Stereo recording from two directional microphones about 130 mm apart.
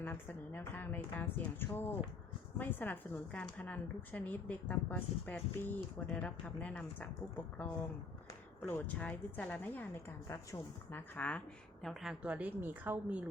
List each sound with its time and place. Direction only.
0.0 s a woman's voice: 15° left (ahead or behind)
8.6 s a woman's voice: 15° left (ahead or behind)
11.9 s a woman's voice: centre (ahead or behind)